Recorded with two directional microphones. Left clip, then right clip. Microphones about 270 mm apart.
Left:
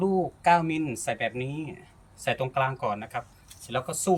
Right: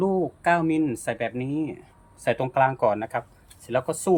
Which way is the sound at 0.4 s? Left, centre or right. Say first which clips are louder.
Right 1 dB; centre.